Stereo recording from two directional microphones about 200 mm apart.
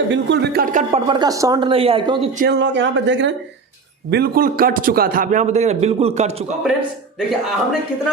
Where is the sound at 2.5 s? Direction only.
60° right (ahead or behind).